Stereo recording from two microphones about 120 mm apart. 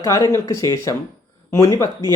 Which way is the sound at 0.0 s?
25° left (ahead or behind).